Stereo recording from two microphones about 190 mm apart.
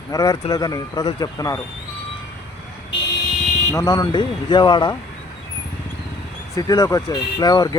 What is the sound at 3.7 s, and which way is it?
Speech, 20° left (ahead or behind).